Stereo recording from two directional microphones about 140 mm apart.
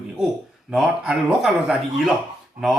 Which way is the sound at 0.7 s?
5° right (ahead or behind).